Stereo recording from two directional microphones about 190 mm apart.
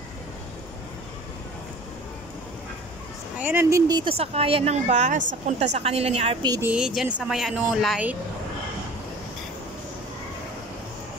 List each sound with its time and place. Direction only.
3.3 s a woman's voice: 10° right (ahead or behind); by 6.3 s 35° right (ahead or behind)
6.4 s speech: 20° right (ahead or behind)
6.7 s a woman's voice: 5° right (ahead or behind)